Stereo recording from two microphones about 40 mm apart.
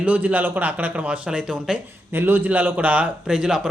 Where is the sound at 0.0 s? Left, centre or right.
Right; by 1.8 s centre.